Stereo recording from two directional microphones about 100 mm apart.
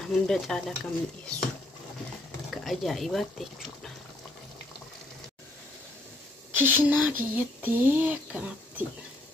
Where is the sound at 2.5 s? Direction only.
Centre (ahead or behind).